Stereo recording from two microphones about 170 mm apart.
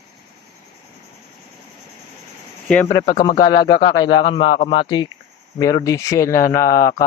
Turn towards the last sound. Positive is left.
turn(degrees=20)  # may be behind; listen again after turning